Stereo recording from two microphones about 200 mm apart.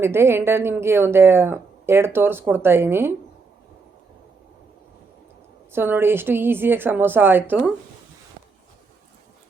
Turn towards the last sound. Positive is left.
turn(degrees=-10)  # may be behind; listen again after turning